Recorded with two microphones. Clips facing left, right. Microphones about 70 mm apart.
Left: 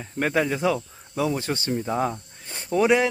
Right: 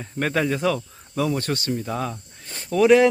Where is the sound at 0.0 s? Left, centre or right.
Centre.